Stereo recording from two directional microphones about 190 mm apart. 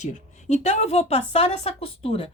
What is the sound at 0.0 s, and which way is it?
A woman's voice, 35° left (ahead or behind).